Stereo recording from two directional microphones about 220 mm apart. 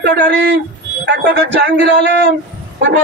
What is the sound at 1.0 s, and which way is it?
A man's voice, 50° right (ahead or behind).